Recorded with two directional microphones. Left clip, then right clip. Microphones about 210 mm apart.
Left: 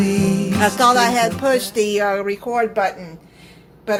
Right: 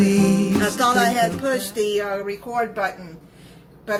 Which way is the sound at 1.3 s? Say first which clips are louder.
Left 5 dB; 35° left (ahead or behind).